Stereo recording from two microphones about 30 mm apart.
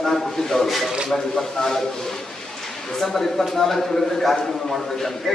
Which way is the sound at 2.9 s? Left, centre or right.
Centre.